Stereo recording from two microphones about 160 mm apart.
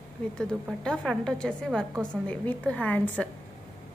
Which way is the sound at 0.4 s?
5° left (ahead or behind).